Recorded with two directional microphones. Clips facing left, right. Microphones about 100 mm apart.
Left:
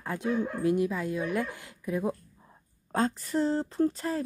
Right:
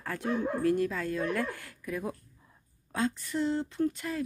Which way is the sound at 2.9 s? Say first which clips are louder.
Left 3 dB; 40° left (ahead or behind).